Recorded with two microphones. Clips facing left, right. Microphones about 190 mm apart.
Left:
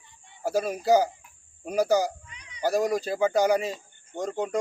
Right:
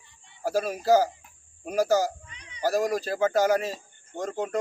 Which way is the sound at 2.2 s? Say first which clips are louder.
Right 1 dB; 30° right (ahead or behind).